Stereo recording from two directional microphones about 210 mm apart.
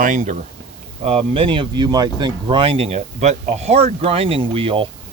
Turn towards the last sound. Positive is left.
turn(degrees=-25)  # may be behind; listen again after turning